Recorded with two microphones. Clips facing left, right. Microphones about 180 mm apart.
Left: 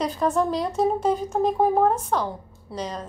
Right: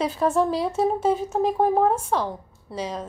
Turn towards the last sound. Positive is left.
turn(degrees=-5)  # may be behind; listen again after turning